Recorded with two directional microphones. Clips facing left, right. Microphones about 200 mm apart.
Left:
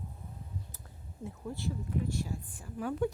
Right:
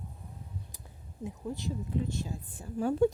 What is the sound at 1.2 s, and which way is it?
Speech, 15° right (ahead or behind).